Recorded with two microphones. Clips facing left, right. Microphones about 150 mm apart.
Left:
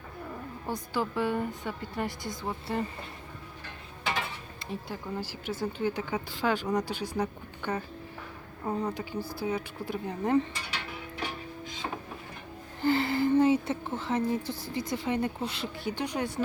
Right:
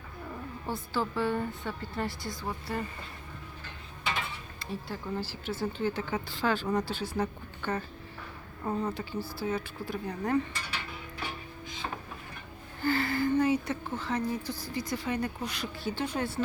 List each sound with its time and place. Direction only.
0.7 s speech: 15° left (ahead or behind)
4.6 s speech: 20° left (ahead or behind)
12.8 s speech: 20° left (ahead or behind)